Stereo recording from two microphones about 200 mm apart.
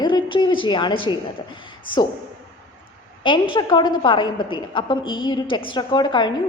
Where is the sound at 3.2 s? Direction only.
25° left (ahead or behind).